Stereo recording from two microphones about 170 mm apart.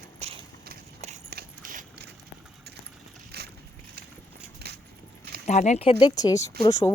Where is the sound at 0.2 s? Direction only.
40° right (ahead or behind).